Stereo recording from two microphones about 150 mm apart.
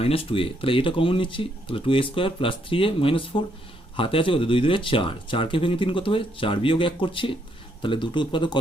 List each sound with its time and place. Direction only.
0.0 s speech: 40° left (ahead or behind)